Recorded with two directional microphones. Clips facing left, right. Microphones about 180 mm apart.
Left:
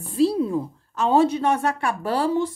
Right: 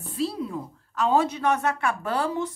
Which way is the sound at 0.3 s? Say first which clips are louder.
Left 8 dB; 30° left (ahead or behind).